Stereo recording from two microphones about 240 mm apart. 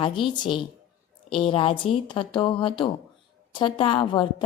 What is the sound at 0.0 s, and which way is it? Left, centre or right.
A woman's voice, centre.